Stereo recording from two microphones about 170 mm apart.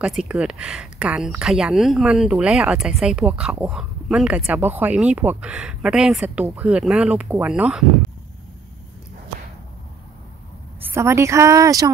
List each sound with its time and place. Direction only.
0.0 s speech: 5° right (ahead or behind)
10.9 s speech: 15° right (ahead or behind)